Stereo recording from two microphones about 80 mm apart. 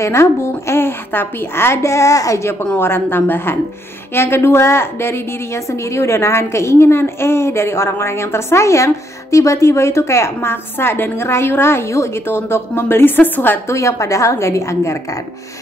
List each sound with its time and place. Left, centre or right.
0.0 s a woman's voice: left
2.8 s a woman's voice: left
13.7 s a woman's voice: left